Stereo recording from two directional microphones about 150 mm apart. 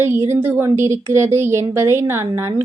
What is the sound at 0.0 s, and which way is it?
A child's voice, 15° right (ahead or behind).